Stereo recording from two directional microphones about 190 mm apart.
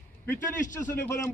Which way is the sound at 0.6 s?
40° left (ahead or behind).